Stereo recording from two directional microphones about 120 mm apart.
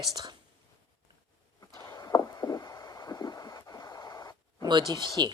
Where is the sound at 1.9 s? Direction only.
30° left (ahead or behind).